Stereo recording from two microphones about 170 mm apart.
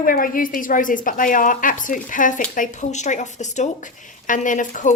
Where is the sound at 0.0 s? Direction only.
55° left (ahead or behind).